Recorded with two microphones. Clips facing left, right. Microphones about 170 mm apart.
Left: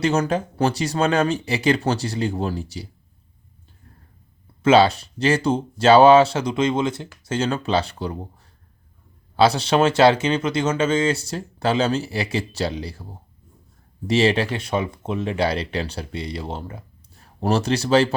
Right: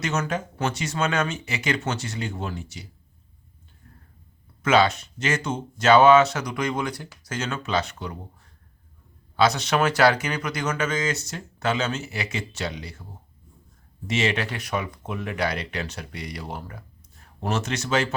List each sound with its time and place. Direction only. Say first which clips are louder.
0.0 s speech: left 6 dB; 30° left (ahead or behind)
4.6 s speech: left 5 dB; 30° left (ahead or behind)
9.3 s speech: left 4 dB; 30° left (ahead or behind)
14.1 s speech: left 7 dB; 35° left (ahead or behind)